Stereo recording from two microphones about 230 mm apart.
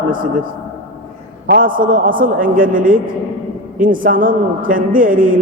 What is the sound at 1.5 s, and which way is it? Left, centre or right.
A man's voice, right.